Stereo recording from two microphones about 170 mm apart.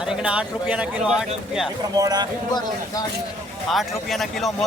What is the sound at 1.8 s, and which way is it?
Speech, 20° right (ahead or behind).